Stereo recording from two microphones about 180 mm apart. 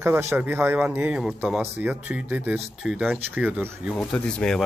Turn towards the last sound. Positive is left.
turn(degrees=5)  # may be behind; listen again after turning